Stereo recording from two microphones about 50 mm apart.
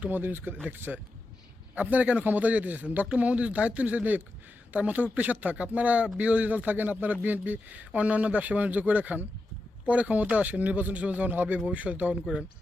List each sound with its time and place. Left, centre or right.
0.1 s a man's voice: right
11.6 s speech: right